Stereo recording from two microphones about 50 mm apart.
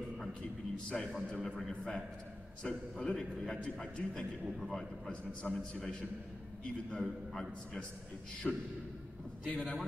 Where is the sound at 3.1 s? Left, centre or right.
Centre.